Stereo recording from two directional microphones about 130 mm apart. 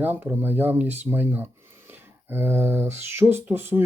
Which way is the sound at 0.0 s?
15° right (ahead or behind).